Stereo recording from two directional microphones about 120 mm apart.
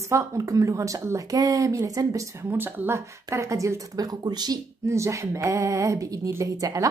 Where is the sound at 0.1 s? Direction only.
25° right (ahead or behind).